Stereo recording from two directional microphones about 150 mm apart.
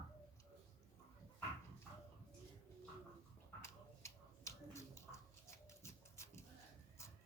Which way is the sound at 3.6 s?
20° left (ahead or behind).